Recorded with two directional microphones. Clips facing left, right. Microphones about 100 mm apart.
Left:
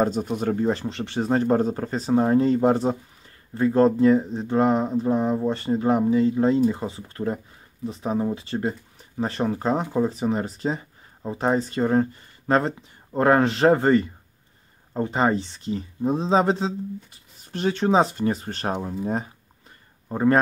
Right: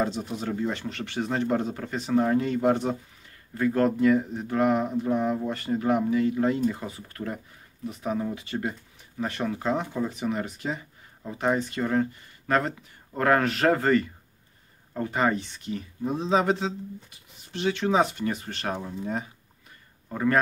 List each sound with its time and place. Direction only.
0.0 s a man's voice: 45° left (ahead or behind); by 20.3 s 30° left (ahead or behind)